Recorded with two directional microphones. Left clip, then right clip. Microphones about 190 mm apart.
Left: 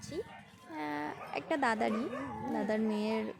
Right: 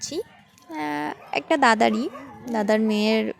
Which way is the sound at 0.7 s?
45° right (ahead or behind).